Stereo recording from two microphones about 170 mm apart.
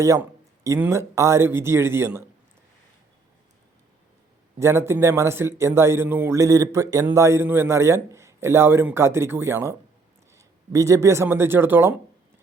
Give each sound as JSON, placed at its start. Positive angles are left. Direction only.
{"t": 0.0, "sound": "speech", "side_deg": -20}
{"t": 4.6, "sound": "speech", "side_deg": -15}